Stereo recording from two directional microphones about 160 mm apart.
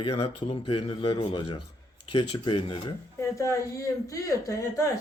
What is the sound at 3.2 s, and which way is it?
Speech, 20° left (ahead or behind).